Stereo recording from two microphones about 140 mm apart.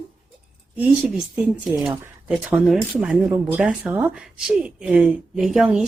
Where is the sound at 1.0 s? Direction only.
5° right (ahead or behind).